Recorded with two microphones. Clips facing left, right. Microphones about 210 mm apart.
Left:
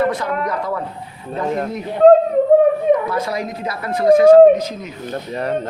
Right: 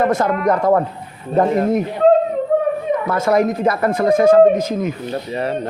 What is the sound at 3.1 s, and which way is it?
A man's voice, 55° right (ahead or behind).